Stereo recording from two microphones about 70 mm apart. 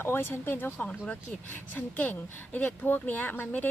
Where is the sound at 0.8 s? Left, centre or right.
Centre.